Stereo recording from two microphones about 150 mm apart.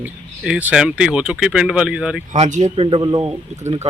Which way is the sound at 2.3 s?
55° right (ahead or behind).